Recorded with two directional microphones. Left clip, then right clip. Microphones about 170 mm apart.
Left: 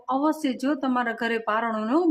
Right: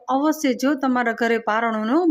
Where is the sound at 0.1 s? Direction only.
20° right (ahead or behind).